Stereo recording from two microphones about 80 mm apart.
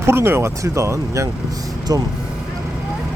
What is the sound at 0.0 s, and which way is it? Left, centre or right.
Speech, right.